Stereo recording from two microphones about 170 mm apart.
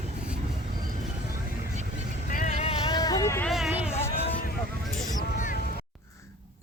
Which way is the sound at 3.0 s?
20° left (ahead or behind).